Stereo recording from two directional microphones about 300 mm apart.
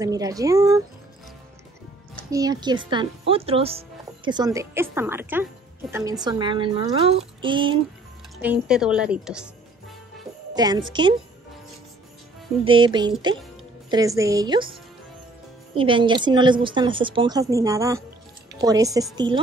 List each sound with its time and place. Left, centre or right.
0.0 s speech: centre
2.3 s speech: centre
8.4 s a woman's voice: centre
10.5 s speech: centre
12.6 s speech: centre